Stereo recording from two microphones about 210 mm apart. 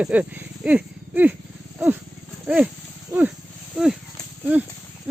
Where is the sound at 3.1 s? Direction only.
15° right (ahead or behind).